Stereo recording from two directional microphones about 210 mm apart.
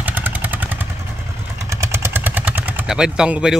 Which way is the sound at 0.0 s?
10° right (ahead or behind).